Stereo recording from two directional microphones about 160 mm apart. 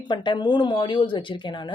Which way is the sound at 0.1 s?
30° left (ahead or behind).